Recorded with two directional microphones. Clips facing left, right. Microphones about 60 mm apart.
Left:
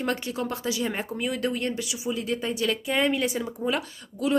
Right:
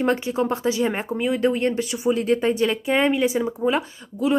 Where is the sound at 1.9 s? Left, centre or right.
Right.